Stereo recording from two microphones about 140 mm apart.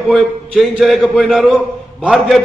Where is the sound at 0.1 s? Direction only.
Centre (ahead or behind).